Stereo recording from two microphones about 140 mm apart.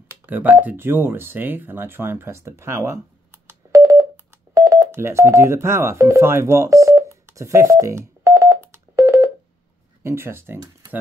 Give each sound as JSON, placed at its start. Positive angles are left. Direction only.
{"t": 0.3, "sound": "speech", "side_deg": -10}
{"t": 4.6, "sound": "telephone dialing", "side_deg": -20}
{"t": 10.0, "sound": "speech", "side_deg": -20}